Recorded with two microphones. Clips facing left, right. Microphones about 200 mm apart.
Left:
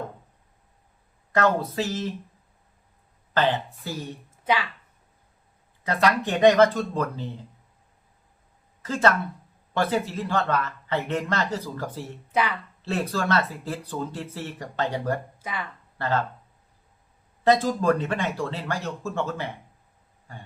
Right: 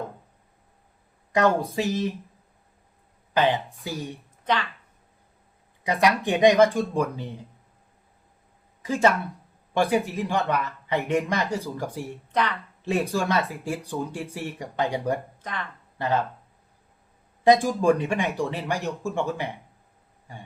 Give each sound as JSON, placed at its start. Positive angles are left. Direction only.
{"t": 1.3, "sound": "speech", "side_deg": -15}
{"t": 3.3, "sound": "speech", "side_deg": -15}
{"t": 4.4, "sound": "a woman's voice", "side_deg": 10}
{"t": 5.8, "sound": "speech", "side_deg": -15}
{"t": 8.8, "sound": "speech", "side_deg": -15}
{"t": 12.3, "sound": "a woman's voice", "side_deg": 5}
{"t": 12.8, "sound": "speech", "side_deg": -15}
{"t": 15.4, "sound": "speech", "side_deg": 5}
{"t": 16.0, "sound": "speech", "side_deg": -15}
{"t": 17.4, "sound": "speech", "side_deg": -15}